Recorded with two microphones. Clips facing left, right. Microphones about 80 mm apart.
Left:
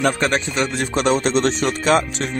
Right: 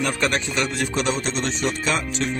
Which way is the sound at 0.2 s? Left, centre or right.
Left.